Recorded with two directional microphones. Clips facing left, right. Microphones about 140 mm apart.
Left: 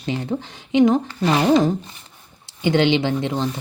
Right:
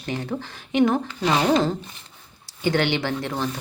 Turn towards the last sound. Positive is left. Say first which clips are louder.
# left 4 dB
turn(degrees=20)  # may be behind; listen again after turning